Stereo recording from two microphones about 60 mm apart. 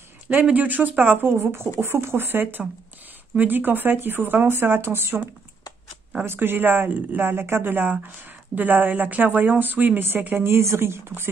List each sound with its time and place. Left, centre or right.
0.3 s speech: right
2.4 s speech: right